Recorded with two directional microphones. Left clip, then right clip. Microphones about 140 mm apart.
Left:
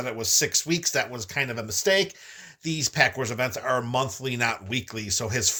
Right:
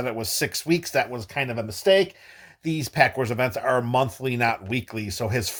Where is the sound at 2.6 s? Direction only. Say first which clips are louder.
Right 2 dB; 50° right (ahead or behind).